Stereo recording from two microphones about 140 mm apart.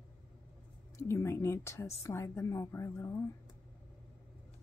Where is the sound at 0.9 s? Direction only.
20° left (ahead or behind).